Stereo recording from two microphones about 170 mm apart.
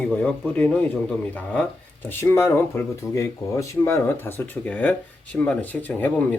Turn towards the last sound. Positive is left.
turn(degrees=10)  # may be behind; listen again after turning